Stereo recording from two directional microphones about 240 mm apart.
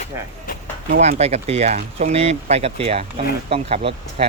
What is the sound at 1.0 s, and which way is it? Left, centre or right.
Speech, right.